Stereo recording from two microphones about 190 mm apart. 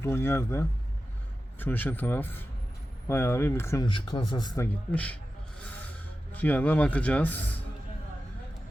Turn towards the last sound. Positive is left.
turn(degrees=10)  # may be behind; listen again after turning